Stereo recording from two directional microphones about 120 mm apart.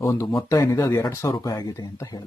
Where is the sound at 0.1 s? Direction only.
25° left (ahead or behind).